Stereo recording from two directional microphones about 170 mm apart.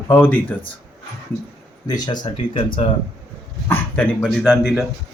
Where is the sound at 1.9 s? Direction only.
25° left (ahead or behind).